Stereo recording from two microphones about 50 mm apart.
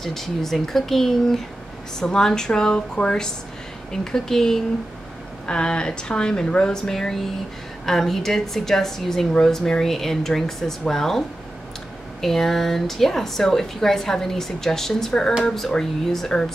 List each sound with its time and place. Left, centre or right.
0.0 s a woman's voice: centre